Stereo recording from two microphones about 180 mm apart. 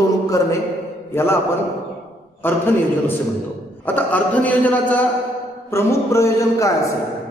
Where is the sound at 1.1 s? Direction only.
15° left (ahead or behind).